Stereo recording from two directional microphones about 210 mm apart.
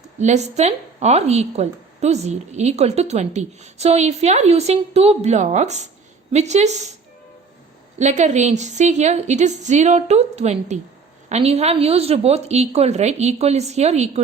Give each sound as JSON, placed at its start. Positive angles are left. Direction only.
{"t": 0.2, "sound": "a woman's voice", "side_deg": -35}
{"t": 7.9, "sound": "a woman's voice", "side_deg": -35}